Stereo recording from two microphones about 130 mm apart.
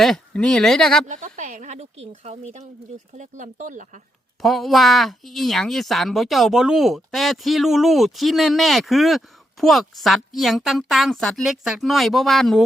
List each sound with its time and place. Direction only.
0.0 s speech: 5° left (ahead or behind)
1.0 s speech: 70° right (ahead or behind)
3.1 s speech: 75° right (ahead or behind)
4.4 s speech: centre (ahead or behind)